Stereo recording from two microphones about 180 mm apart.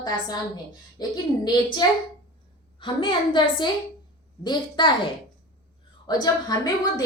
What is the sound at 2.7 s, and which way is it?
A woman's voice, 25° left (ahead or behind).